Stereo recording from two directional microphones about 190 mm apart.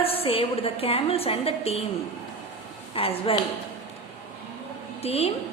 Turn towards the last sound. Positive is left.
turn(degrees=30)  # may be behind; listen again after turning